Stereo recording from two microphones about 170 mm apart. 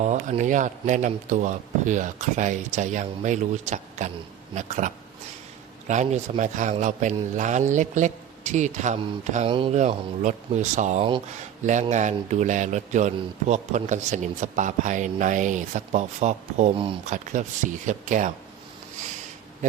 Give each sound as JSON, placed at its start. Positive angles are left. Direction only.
{"t": 0.0, "sound": "a man's voice", "side_deg": -45}
{"t": 5.9, "sound": "a man's voice", "side_deg": -40}
{"t": 9.5, "sound": "speech", "side_deg": -30}
{"t": 9.7, "sound": "a man's voice", "side_deg": -45}